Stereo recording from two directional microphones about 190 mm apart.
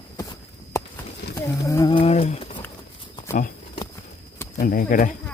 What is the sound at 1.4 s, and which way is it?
Speech, 15° left (ahead or behind).